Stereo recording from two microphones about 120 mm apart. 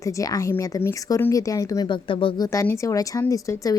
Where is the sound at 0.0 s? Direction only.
30° left (ahead or behind).